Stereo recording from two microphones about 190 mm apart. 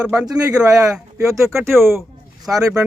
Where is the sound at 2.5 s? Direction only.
10° right (ahead or behind).